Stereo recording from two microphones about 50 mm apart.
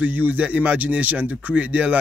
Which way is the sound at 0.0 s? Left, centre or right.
Right.